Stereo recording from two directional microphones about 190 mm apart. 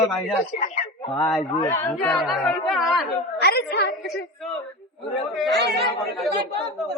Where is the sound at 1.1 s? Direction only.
Centre (ahead or behind).